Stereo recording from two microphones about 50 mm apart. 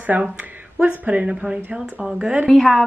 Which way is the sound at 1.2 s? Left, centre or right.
Right.